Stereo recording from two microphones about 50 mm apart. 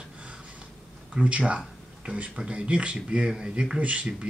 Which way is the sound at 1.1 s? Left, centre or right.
Right.